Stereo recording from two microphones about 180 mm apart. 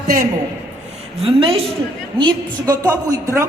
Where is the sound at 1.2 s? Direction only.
30° right (ahead or behind).